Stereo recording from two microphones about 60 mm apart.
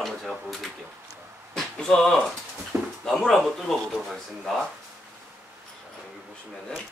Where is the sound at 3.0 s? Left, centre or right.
Centre.